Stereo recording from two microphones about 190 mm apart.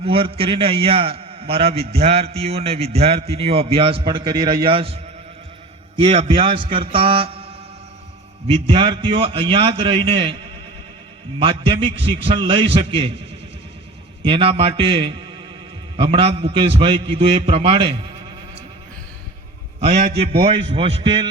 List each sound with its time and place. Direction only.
0.0 s a man's voice: 30° right (ahead or behind)
6.0 s a man's voice: 30° right (ahead or behind)
8.6 s a man's voice: 25° right (ahead or behind)
11.3 s a man's voice: 25° right (ahead or behind)
14.3 s a man's voice: 30° right (ahead or behind)
20.1 s a man's voice: 30° right (ahead or behind)